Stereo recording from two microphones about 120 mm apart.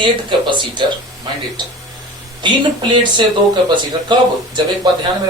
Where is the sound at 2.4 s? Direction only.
40° right (ahead or behind).